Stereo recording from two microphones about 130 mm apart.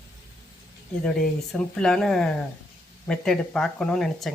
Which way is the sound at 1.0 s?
5° left (ahead or behind).